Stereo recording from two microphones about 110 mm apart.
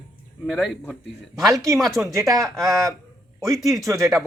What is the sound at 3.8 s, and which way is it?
Speech, 30° right (ahead or behind).